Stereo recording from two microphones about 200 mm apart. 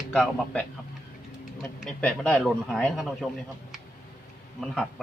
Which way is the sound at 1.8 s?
5° left (ahead or behind).